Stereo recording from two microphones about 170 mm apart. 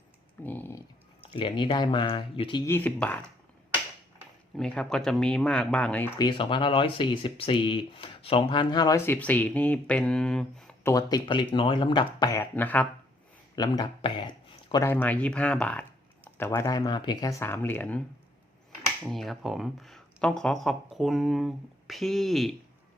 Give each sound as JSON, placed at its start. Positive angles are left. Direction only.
{"t": 0.4, "sound": "a sound", "side_deg": 10}
{"t": 1.3, "sound": "speech", "side_deg": 30}
{"t": 2.6, "sound": "speech", "side_deg": 10}
{"t": 4.5, "sound": "speech", "side_deg": 5}
{"t": 6.1, "sound": "speech", "side_deg": 30}
{"t": 9.0, "sound": "speech", "side_deg": 10}
{"t": 10.8, "sound": "speech", "side_deg": 20}
{"t": 13.6, "sound": "speech", "side_deg": 25}
{"t": 14.8, "sound": "speech", "side_deg": 10}
{"t": 16.5, "sound": "speech", "side_deg": 20}
{"t": 19.0, "sound": "speech", "side_deg": 0}